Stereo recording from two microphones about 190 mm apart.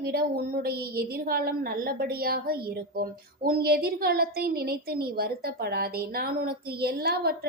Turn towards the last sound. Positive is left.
turn(degrees=-55)  # may be behind; listen again after turning